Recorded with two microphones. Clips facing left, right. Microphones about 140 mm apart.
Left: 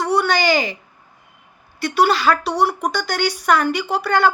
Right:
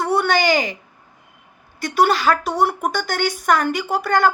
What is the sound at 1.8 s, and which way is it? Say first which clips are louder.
A woman's voice: even; 45° right (ahead or behind).